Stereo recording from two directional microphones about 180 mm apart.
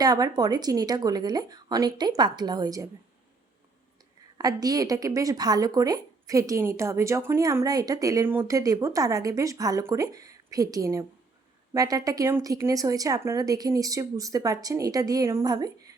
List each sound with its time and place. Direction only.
0.0 s a woman's voice: 20° right (ahead or behind)
4.4 s a woman's voice: 20° right (ahead or behind)